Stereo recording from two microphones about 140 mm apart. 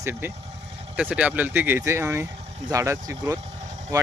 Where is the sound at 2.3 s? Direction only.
50° right (ahead or behind).